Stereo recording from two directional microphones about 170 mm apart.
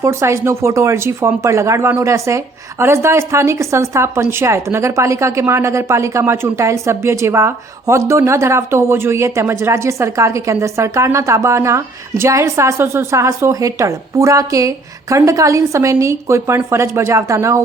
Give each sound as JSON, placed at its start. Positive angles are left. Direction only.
{"t": 0.0, "sound": "speech", "side_deg": -15}